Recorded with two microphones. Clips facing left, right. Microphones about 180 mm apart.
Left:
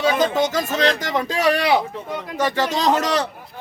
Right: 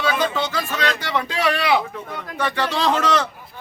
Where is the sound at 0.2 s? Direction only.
45° left (ahead or behind).